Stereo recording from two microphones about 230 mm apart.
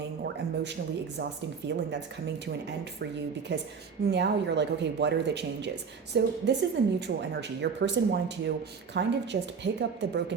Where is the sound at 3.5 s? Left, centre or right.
Right.